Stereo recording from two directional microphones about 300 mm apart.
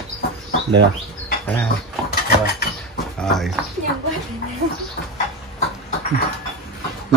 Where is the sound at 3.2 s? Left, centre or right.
Centre.